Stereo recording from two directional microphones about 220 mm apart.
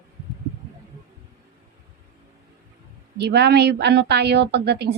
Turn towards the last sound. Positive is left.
turn(degrees=-50)  # may be behind; listen again after turning